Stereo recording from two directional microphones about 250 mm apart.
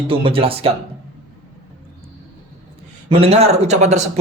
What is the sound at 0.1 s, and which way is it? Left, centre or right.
Speech, right.